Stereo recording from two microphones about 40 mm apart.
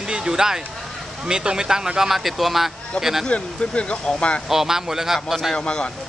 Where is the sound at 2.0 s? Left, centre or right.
Centre.